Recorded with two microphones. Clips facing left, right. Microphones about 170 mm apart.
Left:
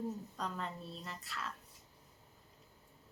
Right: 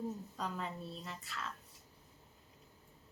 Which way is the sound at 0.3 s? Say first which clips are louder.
Even; 5° right (ahead or behind).